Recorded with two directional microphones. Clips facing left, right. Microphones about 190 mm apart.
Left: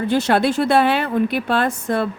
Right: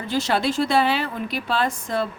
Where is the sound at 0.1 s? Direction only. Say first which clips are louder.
Left 4 dB; 60° left (ahead or behind).